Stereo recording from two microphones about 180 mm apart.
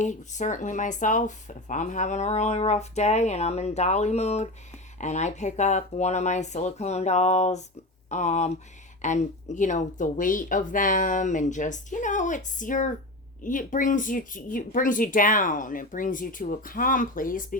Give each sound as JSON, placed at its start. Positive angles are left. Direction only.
{"t": 0.0, "sound": "speech", "side_deg": 45}